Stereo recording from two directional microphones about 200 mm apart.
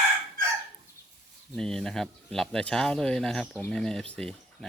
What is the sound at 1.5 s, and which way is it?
Speech, 5° left (ahead or behind).